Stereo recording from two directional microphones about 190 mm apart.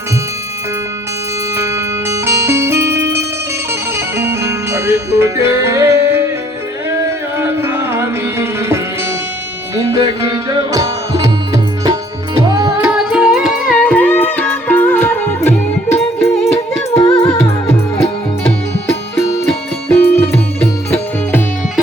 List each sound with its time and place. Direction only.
1.5 s music: 15° right (ahead or behind)
7.3 s music: 15° right (ahead or behind)
12.9 s music: 5° right (ahead or behind); by 16.0 s 15° left (ahead or behind)
16.7 s music: 30° left (ahead or behind)
20.0 s music: 10° left (ahead or behind)